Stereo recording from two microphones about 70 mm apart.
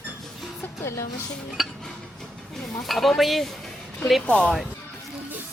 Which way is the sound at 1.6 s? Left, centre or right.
Centre.